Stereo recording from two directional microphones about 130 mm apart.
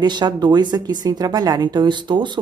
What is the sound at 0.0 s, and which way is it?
Speech, 35° right (ahead or behind).